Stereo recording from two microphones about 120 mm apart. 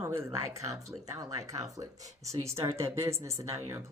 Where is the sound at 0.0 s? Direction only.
20° right (ahead or behind).